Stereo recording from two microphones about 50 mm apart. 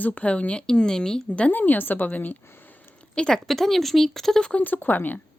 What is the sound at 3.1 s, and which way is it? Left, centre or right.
A woman's voice, centre.